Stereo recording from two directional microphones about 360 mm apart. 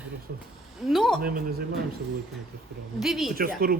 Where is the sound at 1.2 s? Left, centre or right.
Right.